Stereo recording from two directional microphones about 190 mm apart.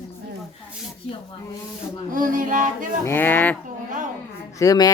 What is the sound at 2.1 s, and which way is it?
Music, 45° right (ahead or behind).